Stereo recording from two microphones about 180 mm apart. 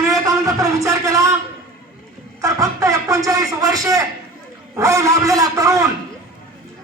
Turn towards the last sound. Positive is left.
turn(degrees=-20)  # may be behind; listen again after turning